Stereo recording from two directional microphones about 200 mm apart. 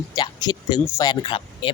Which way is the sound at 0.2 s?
20° left (ahead or behind).